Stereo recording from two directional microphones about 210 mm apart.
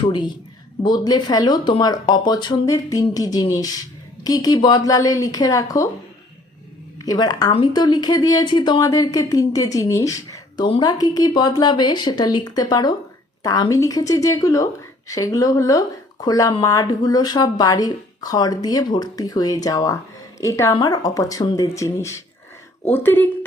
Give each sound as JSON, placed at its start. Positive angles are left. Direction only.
{"t": 0.8, "sound": "speech", "side_deg": 20}
{"t": 7.0, "sound": "speech", "side_deg": 20}